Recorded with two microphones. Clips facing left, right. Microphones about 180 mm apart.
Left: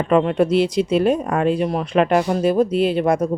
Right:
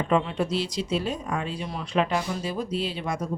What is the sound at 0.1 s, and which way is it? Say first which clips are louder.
Speech: left 10 dB; 55° left (ahead or behind).